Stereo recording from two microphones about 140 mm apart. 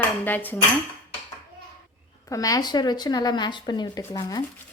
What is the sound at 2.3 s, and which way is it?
Speech, 25° left (ahead or behind).